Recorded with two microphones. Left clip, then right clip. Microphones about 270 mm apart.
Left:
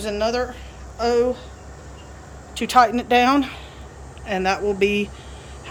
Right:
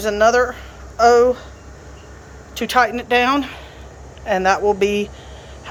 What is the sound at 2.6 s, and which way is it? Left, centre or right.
Speech, centre.